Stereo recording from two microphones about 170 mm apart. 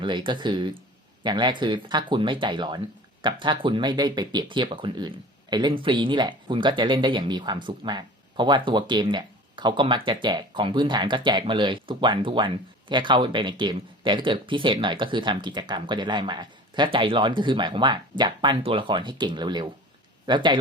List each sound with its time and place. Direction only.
0.0 s speech: 25° right (ahead or behind)